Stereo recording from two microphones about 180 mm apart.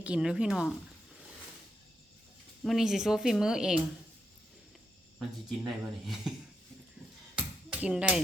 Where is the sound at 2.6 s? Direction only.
Centre (ahead or behind).